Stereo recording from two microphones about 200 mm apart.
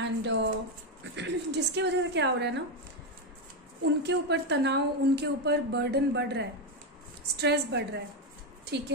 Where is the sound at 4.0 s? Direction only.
60° right (ahead or behind).